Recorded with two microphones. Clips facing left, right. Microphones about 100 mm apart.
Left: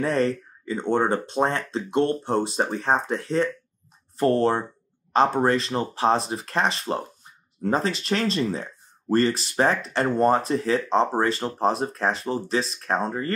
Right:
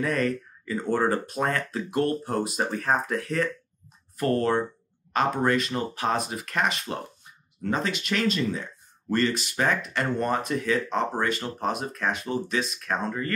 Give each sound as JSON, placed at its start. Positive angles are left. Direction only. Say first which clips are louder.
{"t": 0.0, "sound": "speech", "louder": "left 3 dB", "side_deg": 30}